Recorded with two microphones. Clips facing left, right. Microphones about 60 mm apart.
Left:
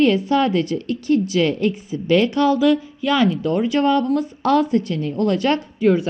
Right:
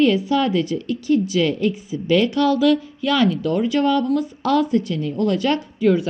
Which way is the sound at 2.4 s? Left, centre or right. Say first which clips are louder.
Left 1 dB; left.